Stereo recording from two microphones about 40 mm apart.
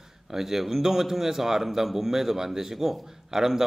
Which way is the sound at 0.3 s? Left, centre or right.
Centre.